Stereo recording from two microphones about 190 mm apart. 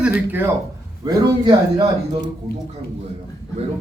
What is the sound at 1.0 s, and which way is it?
Speech, 25° right (ahead or behind).